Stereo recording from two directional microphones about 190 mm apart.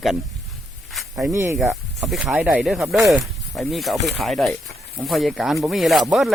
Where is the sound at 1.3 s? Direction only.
15° right (ahead or behind).